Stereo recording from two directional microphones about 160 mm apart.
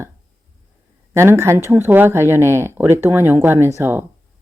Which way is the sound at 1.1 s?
15° right (ahead or behind).